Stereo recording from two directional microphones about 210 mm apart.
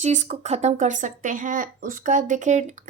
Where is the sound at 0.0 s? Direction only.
35° right (ahead or behind).